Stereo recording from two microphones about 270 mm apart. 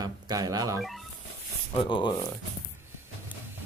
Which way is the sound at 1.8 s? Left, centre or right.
Centre.